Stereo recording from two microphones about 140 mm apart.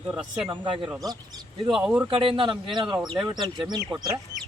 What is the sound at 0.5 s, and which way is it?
Speech, 35° right (ahead or behind).